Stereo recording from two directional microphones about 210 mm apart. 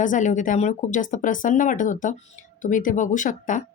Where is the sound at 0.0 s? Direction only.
35° left (ahead or behind).